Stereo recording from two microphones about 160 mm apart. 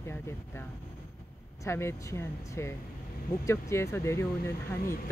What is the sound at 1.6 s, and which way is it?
Speech, 15° left (ahead or behind).